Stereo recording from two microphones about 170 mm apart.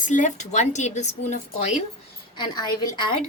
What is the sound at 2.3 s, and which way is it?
Speech, 25° left (ahead or behind).